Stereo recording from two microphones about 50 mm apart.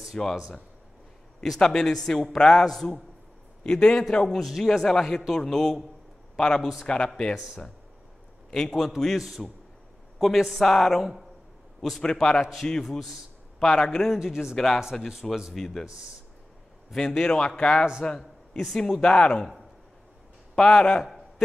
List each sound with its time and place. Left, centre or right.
0.1 s speech: centre
1.4 s speech: centre
4.3 s speech: centre
7.3 s speech: centre
8.5 s a man's voice: centre
14.1 s speech: centre
14.5 s speech: centre
14.8 s speech: centre
15.5 s speech: centre
16.9 s speech: centre
18.0 s a sound: centre
18.6 s speech: centre
20.5 s speech: centre